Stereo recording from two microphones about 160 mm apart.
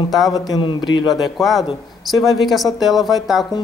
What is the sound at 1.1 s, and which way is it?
Speech, centre (ahead or behind).